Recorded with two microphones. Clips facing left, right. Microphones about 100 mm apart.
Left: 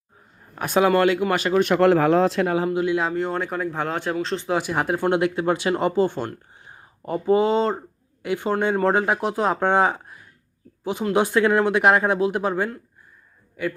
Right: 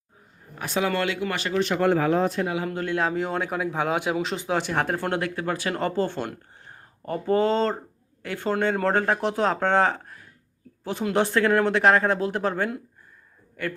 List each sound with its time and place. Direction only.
0.5 s speech: 50° left (ahead or behind)
1.5 s a man's voice: 50° left (ahead or behind)
1.8 s speech: 80° left
2.6 s speech: 5° left (ahead or behind)
4.5 s speech: 5° left (ahead or behind)